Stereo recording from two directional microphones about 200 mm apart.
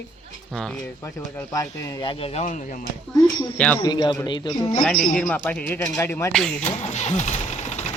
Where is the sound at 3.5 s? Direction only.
5° left (ahead or behind).